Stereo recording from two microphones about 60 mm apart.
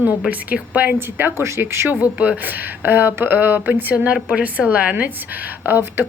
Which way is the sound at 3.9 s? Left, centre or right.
Right.